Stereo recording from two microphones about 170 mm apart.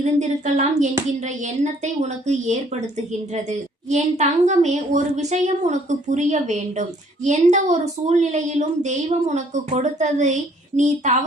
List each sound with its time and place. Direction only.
0.0 s a woman's voice: 45° right (ahead or behind)
3.8 s a woman's voice: 40° right (ahead or behind)